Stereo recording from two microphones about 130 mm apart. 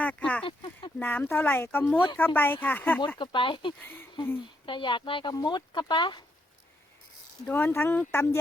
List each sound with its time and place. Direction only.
0.0 s speech: 10° left (ahead or behind)
0.4 s speech: 40° left (ahead or behind)
0.9 s speech: 15° left (ahead or behind)
3.2 s speech: 40° left (ahead or behind)
3.8 s speech: 15° left (ahead or behind)
4.6 s speech: 40° left (ahead or behind)
7.4 s speech: 15° left (ahead or behind)